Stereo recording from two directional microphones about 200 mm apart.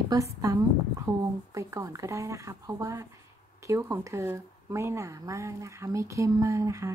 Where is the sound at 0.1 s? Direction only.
15° right (ahead or behind).